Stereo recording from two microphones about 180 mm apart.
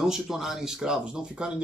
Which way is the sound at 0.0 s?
Centre (ahead or behind).